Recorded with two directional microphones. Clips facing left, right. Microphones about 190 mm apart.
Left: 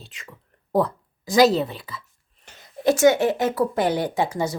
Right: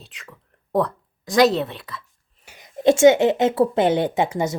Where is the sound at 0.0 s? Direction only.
Centre (ahead or behind).